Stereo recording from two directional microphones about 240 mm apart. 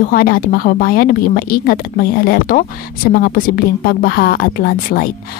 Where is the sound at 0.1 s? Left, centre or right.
Left.